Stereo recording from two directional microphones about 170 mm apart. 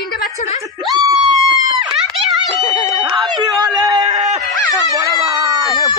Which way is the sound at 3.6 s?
25° right (ahead or behind).